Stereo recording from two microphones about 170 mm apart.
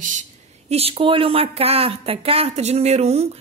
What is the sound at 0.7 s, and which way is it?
A woman's voice, 35° right (ahead or behind).